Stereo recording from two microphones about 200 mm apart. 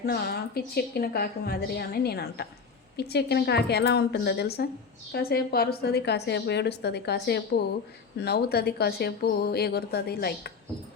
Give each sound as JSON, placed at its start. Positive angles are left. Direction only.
{"t": 0.0, "sound": "a woman's voice", "side_deg": 50}